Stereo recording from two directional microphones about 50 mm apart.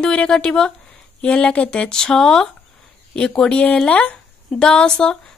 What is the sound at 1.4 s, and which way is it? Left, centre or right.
Speech, left.